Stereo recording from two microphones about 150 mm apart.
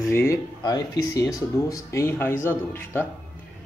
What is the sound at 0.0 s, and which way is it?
Speech, 20° left (ahead or behind).